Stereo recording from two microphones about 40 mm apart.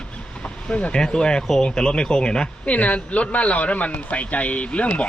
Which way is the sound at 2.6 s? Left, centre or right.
Left.